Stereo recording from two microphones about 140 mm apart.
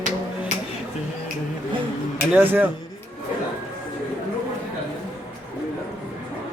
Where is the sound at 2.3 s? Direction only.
15° right (ahead or behind).